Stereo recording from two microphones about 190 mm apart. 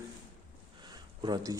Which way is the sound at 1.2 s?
20° right (ahead or behind).